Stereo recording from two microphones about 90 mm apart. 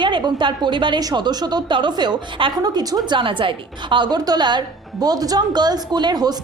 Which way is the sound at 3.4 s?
65° right (ahead or behind).